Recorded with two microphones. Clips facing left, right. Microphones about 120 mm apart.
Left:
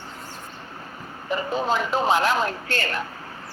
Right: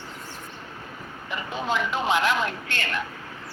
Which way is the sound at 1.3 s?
35° left (ahead or behind).